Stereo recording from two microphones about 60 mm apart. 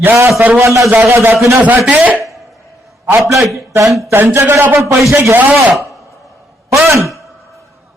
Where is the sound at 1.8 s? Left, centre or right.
Right.